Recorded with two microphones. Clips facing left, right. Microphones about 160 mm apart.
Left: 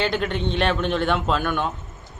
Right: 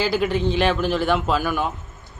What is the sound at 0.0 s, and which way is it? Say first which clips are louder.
A man's voice: right 3 dB; 5° right (ahead or behind).